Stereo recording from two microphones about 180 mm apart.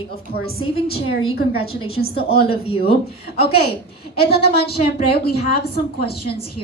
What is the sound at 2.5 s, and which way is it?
Speech, 30° left (ahead or behind).